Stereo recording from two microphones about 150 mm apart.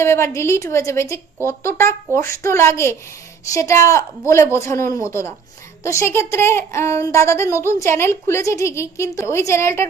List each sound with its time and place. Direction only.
0.0 s a woman's voice: 15° left (ahead or behind)